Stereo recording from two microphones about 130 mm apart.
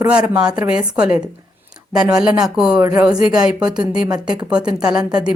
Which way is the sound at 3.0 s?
5° right (ahead or behind).